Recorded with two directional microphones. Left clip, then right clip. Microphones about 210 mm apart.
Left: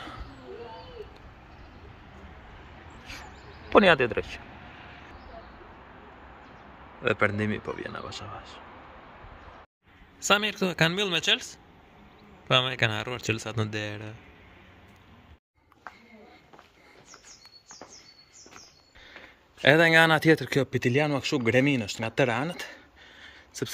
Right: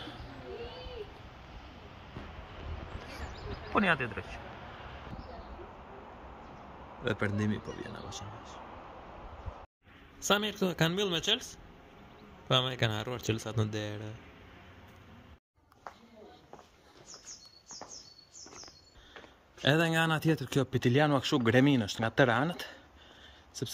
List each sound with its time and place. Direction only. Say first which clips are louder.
3.8 s speech: left 9 dB; 30° left (ahead or behind)
7.1 s speech: left 8 dB; 5° right (ahead or behind)
10.2 s speech: left 5 dB; centre (ahead or behind)
19.6 s speech: left 10 dB; centre (ahead or behind)
23.2 s a sound: left 6 dB; centre (ahead or behind)